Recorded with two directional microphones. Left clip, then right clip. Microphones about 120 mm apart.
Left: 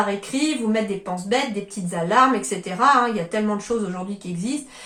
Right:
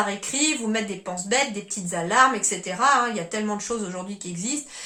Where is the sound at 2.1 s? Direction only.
15° right (ahead or behind).